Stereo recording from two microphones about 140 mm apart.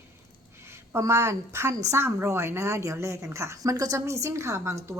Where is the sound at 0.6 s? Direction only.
20° right (ahead or behind).